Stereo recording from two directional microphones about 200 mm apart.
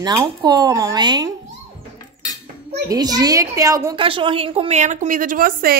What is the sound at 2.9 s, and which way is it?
A woman's voice, 20° right (ahead or behind).